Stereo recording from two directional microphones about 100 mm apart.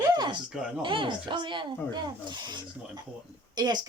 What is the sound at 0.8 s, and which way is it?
Speech, 55° right (ahead or behind).